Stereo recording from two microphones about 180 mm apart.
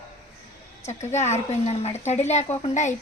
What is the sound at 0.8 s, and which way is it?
A woman's voice, 40° left (ahead or behind).